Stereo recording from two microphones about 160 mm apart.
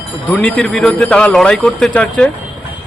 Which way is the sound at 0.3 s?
10° left (ahead or behind).